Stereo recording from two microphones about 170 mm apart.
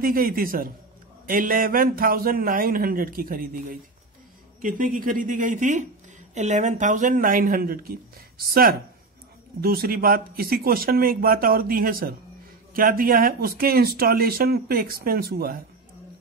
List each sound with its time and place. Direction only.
0.0 s speech: 55° right (ahead or behind)
9.6 s speech: 60° right (ahead or behind)